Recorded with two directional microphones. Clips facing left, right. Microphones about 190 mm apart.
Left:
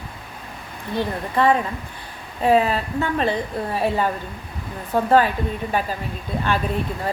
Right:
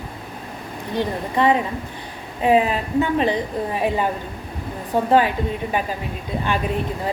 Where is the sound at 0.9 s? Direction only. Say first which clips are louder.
Even; 15° right (ahead or behind).